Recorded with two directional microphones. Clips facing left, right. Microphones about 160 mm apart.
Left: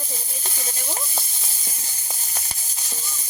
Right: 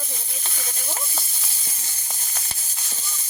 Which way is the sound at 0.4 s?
25° left (ahead or behind).